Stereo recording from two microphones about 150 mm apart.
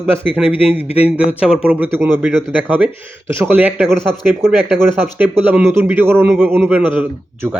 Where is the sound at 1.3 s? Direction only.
10° right (ahead or behind).